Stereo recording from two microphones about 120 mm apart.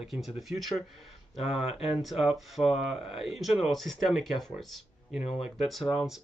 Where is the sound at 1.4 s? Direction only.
55° left (ahead or behind).